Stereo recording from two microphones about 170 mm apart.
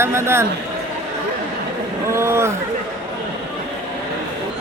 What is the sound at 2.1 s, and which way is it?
Speech, 15° right (ahead or behind).